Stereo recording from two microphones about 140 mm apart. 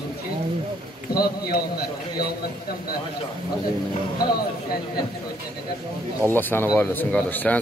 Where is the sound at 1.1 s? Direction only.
90° left.